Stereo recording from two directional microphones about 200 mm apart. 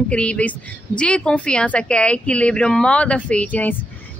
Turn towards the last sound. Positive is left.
turn(degrees=5)  # may be behind; listen again after turning